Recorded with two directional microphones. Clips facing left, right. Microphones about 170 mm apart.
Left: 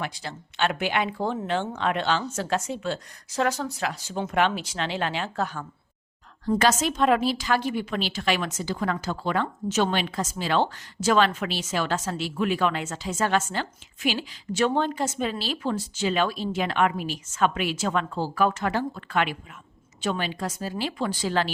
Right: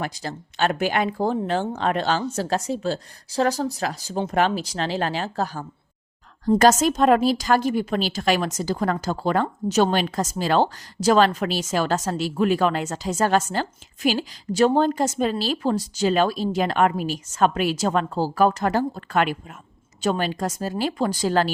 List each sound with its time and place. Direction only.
0.0 s a woman's voice: 40° right (ahead or behind)